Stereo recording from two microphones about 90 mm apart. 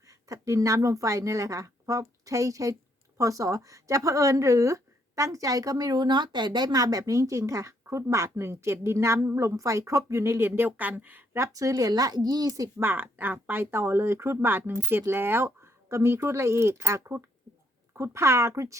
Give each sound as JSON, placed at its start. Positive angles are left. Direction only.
{"t": 0.1, "sound": "a woman's voice", "side_deg": -35}
{"t": 11.5, "sound": "speech", "side_deg": -40}
{"t": 12.8, "sound": "speech", "side_deg": -25}